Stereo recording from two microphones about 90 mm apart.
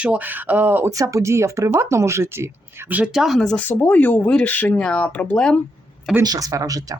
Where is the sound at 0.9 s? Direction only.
35° right (ahead or behind).